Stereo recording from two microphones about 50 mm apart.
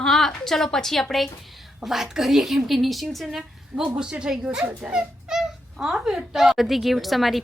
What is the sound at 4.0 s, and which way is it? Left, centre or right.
Speech, centre.